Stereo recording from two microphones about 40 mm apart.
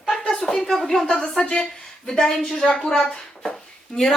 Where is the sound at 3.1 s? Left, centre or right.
Centre.